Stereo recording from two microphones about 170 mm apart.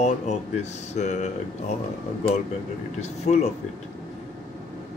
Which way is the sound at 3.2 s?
40° left (ahead or behind).